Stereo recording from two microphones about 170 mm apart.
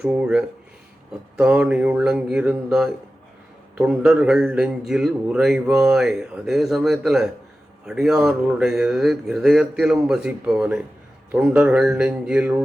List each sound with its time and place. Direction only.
0.0 s a man's voice: 5° right (ahead or behind)